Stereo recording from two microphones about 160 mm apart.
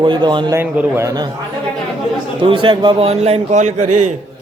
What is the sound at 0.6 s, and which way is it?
Speech, 15° right (ahead or behind).